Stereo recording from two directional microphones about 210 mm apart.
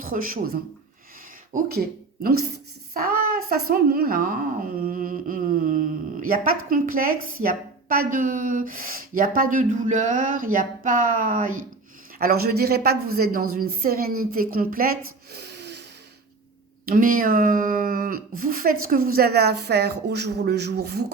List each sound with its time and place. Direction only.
0.0 s a woman's voice: 40° right (ahead or behind)
15.3 s snort: 50° right (ahead or behind)
16.8 s a woman's voice: 40° right (ahead or behind)